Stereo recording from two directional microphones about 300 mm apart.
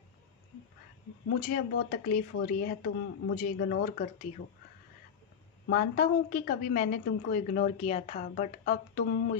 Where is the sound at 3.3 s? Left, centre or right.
Left.